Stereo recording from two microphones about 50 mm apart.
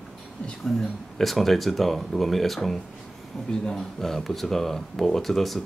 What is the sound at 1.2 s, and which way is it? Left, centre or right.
Speech, centre.